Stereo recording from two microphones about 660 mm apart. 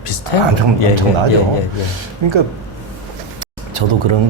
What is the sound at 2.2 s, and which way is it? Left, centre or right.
Speech, right.